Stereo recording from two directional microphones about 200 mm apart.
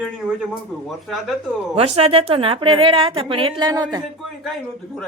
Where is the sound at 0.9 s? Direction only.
Centre (ahead or behind).